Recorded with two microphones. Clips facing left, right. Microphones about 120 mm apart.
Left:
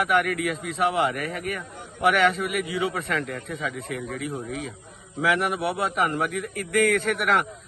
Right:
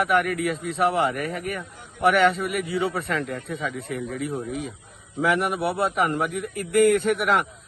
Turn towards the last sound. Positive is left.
turn(degrees=0)  # may be behind; listen again after turning